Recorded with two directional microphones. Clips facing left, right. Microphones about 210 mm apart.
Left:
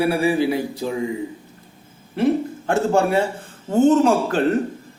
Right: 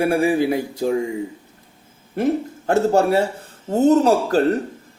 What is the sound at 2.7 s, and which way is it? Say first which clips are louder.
Speech: right 2 dB; 40° right (ahead or behind).